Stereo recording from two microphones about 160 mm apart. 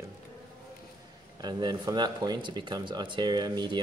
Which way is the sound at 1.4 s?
25° right (ahead or behind).